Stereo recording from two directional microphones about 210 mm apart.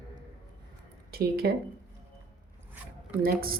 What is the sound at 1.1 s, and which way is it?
Speech, 45° right (ahead or behind).